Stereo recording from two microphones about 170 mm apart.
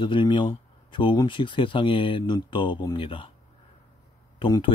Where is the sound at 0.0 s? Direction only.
25° left (ahead or behind).